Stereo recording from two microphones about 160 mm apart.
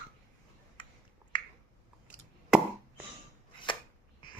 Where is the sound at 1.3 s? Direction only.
30° left (ahead or behind).